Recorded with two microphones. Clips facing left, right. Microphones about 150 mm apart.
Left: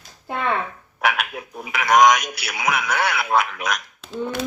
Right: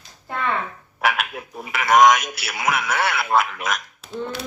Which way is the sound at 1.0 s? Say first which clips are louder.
Even; centre (ahead or behind).